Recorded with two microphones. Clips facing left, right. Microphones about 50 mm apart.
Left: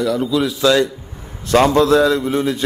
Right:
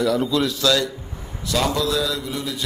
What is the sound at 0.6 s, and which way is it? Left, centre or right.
Speech, left.